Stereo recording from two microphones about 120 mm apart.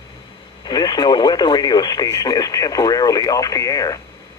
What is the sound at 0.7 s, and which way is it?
Speech, 35° left (ahead or behind).